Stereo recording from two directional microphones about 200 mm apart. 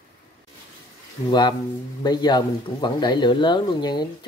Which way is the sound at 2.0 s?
20° left (ahead or behind).